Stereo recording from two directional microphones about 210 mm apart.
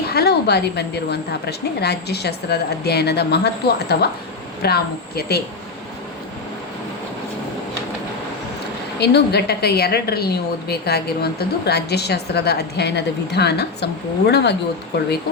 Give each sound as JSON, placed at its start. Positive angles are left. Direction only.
{"t": 0.1, "sound": "a woman's voice", "side_deg": 50}
{"t": 9.0, "sound": "a woman's voice", "side_deg": 50}